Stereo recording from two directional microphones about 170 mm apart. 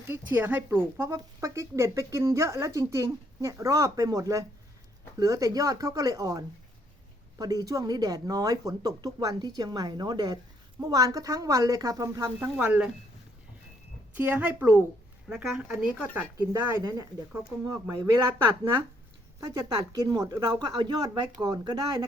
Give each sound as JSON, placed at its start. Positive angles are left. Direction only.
{"t": 0.1, "sound": "a woman's voice", "side_deg": -10}
{"t": 12.5, "sound": "a woman's voice", "side_deg": -5}
{"t": 14.2, "sound": "a woman's voice", "side_deg": -10}
{"t": 19.4, "sound": "speech", "side_deg": -20}